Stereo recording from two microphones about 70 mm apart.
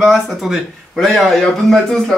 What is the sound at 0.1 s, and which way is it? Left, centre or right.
Speech, centre.